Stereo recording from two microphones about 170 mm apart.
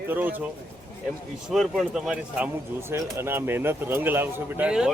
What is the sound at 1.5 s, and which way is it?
Speech, centre (ahead or behind).